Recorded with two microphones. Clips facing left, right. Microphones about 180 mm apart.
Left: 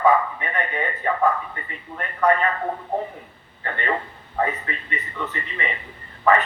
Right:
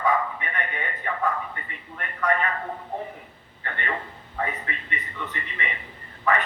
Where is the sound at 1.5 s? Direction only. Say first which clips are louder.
Left 5 dB; 35° left (ahead or behind).